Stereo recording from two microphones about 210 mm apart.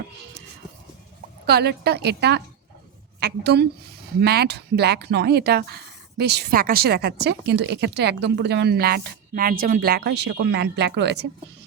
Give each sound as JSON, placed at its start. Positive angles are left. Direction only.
{"t": 1.5, "sound": "speech", "side_deg": -50}